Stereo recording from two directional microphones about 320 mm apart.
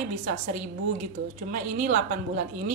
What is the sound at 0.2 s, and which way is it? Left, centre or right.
A woman's voice, right.